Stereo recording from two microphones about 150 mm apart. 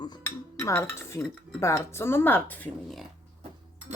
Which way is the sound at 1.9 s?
15° left (ahead or behind).